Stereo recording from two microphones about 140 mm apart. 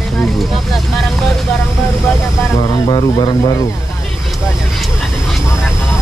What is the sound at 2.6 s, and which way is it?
Speech, 35° left (ahead or behind).